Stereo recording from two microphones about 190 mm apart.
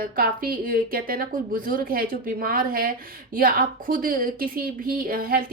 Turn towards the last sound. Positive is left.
turn(degrees=-50)  # may be behind; listen again after turning